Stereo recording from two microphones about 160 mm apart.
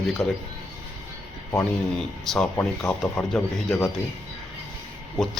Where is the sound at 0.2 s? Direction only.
Centre (ahead or behind).